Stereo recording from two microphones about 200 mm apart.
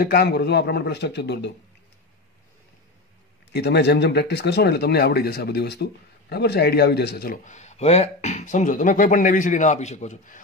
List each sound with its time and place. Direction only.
0.0 s a man's voice: 50° left (ahead or behind)
3.5 s speech: 55° left (ahead or behind); by 10.4 s 40° left (ahead or behind)